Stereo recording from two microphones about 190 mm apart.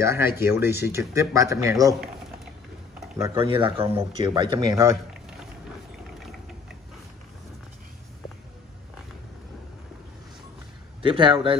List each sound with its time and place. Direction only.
0.0 s speech: 15° right (ahead or behind)
2.9 s a sound: 15° right (ahead or behind)
3.3 s speech: 30° right (ahead or behind)
11.0 s speech: 25° right (ahead or behind)